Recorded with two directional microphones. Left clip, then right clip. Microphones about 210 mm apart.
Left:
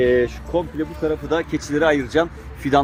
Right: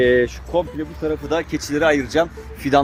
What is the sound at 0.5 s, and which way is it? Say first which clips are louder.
Speech: right 2 dB; 55° right (ahead or behind).